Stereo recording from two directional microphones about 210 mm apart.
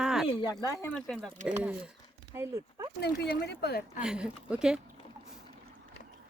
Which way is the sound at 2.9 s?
50° left (ahead or behind).